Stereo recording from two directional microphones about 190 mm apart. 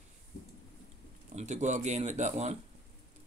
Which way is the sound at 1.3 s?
40° right (ahead or behind).